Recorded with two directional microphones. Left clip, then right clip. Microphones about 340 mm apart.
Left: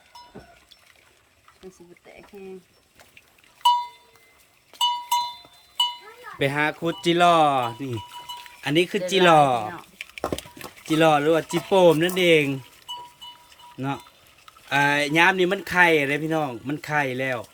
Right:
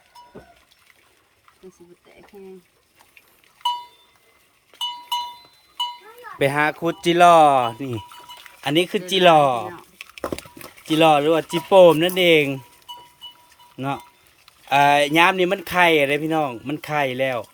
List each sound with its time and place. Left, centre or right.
4.7 s cowbell: left
6.4 s speech: centre
10.2 s speech: centre
13.7 s speech: centre